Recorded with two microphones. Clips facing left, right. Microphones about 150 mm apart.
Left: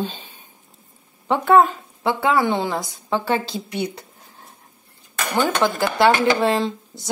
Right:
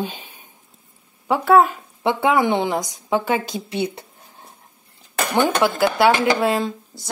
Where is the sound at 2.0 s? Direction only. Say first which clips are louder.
Right 1 dB; 20° right (ahead or behind).